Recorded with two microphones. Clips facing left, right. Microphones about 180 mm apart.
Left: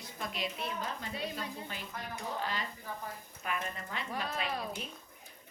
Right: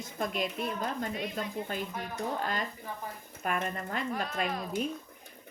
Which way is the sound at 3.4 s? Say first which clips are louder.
Right 6 dB; 50° right (ahead or behind).